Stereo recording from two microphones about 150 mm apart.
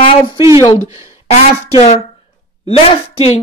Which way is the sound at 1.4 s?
45° left (ahead or behind).